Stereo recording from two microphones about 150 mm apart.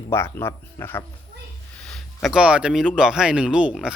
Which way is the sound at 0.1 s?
15° left (ahead or behind).